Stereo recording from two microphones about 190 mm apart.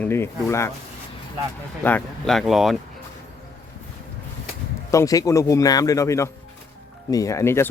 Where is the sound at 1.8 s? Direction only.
5° left (ahead or behind).